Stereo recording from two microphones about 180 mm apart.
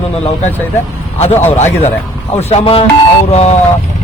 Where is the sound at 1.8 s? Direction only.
35° left (ahead or behind).